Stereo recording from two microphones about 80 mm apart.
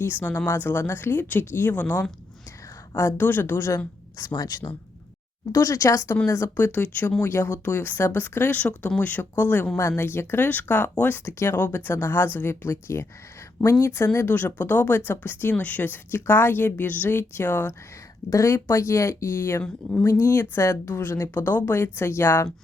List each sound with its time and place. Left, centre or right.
0.0 s speech: left
2.9 s speech: left
4.4 s speech: left
6.7 s speech: left
7.2 s speech: left